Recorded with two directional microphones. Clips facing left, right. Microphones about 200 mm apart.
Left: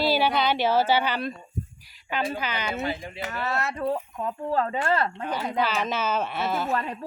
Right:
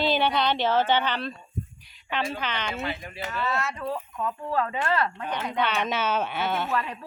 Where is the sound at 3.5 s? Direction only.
60° left (ahead or behind).